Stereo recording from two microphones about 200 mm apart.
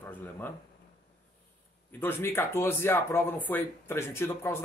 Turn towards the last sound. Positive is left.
turn(degrees=10)  # may be behind; listen again after turning